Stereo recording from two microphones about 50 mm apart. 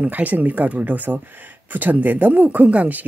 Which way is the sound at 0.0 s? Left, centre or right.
Right.